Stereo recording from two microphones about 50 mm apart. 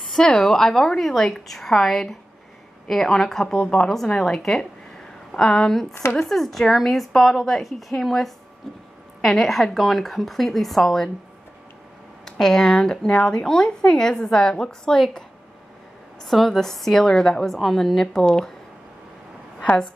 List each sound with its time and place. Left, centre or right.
0.0 s a woman's voice: centre
12.3 s speech: centre
16.3 s a woman's voice: centre
19.6 s a woman's voice: left